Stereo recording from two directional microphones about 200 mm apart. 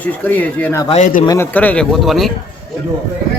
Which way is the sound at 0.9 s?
35° left (ahead or behind).